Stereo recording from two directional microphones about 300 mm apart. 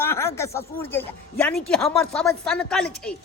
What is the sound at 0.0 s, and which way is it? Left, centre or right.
A man's voice, centre.